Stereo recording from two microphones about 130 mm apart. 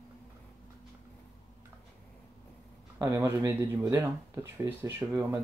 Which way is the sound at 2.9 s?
20° right (ahead or behind).